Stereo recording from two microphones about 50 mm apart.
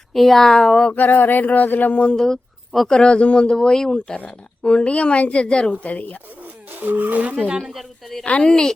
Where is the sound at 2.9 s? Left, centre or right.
Centre.